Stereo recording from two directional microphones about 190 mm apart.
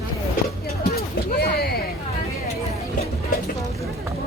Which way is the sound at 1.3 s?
60° left (ahead or behind).